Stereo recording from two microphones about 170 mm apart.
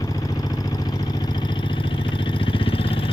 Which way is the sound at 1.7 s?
30° left (ahead or behind).